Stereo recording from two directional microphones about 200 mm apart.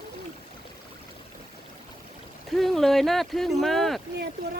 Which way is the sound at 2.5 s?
Centre (ahead or behind).